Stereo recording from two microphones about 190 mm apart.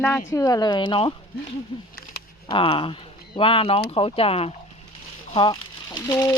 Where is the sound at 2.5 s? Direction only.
30° left (ahead or behind).